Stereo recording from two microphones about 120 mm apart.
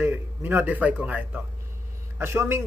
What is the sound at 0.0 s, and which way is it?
A man's voice, 15° right (ahead or behind).